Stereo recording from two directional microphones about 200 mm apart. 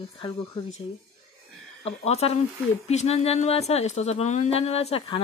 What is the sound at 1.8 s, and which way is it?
Speech, 30° left (ahead or behind).